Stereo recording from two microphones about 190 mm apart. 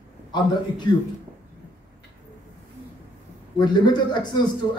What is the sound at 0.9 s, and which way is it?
Speech, 20° left (ahead or behind).